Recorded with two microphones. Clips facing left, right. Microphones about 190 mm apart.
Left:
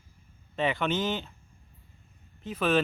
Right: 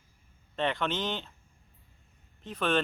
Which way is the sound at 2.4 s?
5° left (ahead or behind).